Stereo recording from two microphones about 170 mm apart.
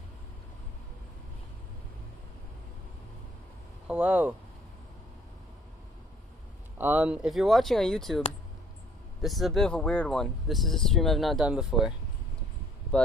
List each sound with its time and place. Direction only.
3.8 s speech: 10° right (ahead or behind)
6.8 s speech: 10° right (ahead or behind)
9.2 s speech: centre (ahead or behind)